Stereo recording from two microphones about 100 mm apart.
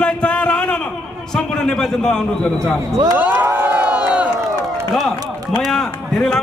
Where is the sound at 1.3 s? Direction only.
5° left (ahead or behind).